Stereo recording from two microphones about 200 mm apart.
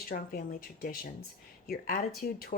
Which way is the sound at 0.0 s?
45° left (ahead or behind).